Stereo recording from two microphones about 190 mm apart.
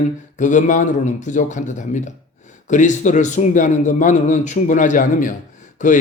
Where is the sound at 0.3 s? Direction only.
40° left (ahead or behind).